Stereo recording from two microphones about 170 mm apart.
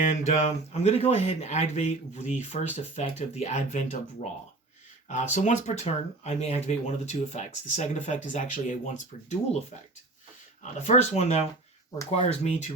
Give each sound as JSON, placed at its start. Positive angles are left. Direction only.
{"t": 0.0, "sound": "speech", "side_deg": 45}
{"t": 10.6, "sound": "speech", "side_deg": 45}